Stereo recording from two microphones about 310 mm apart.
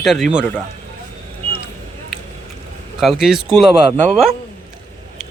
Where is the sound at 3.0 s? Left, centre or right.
Centre.